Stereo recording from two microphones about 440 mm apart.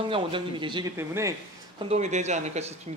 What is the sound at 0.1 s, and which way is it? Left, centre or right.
A man's voice, centre.